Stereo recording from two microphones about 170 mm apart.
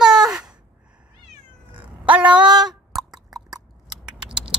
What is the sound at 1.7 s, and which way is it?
Cat, 10° right (ahead or behind).